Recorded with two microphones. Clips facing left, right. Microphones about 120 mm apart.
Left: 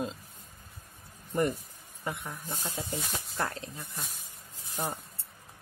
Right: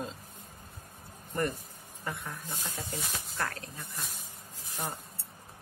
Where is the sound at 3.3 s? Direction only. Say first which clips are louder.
Left 2 dB; 20° left (ahead or behind).